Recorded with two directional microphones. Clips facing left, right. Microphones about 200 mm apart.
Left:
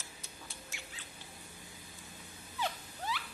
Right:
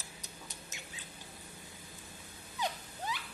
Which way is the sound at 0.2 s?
20° right (ahead or behind).